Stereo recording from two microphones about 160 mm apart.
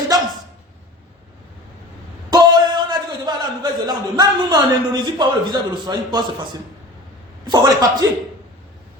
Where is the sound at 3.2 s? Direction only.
25° right (ahead or behind).